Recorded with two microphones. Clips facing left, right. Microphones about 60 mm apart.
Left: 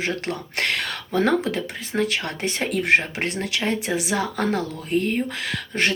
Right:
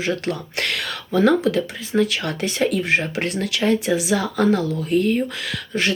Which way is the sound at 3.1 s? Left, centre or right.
Left.